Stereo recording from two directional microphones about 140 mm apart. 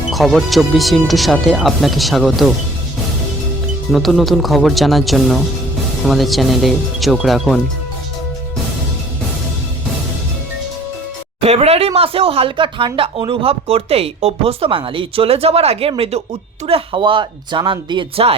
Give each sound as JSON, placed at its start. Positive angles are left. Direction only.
{"t": 0.1, "sound": "speech", "side_deg": 0}
{"t": 3.9, "sound": "speech", "side_deg": 0}
{"t": 11.3, "sound": "speech", "side_deg": -45}